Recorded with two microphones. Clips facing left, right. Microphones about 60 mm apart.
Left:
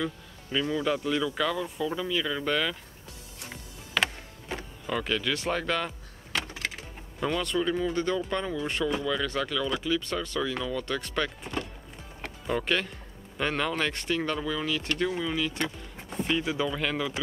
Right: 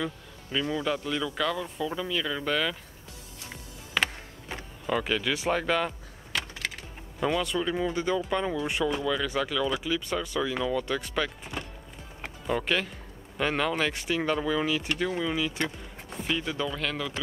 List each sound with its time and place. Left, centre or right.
0.0 s speech: centre
4.0 s power windows: centre
6.3 s a sound: centre
7.2 s speech: centre
12.2 s music: centre
13.4 s speech: centre